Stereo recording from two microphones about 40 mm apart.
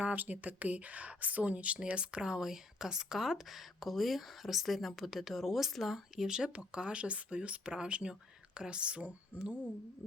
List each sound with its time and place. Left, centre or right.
0.0 s speech: right
2.2 s speech: centre
6.2 s speech: centre
7.6 s speech: centre
7.9 s speech: right